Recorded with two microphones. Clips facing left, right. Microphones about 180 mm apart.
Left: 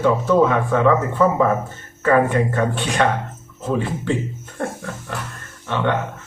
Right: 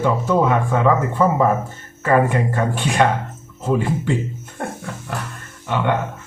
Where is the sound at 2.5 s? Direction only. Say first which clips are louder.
Right 1 dB; 10° right (ahead or behind).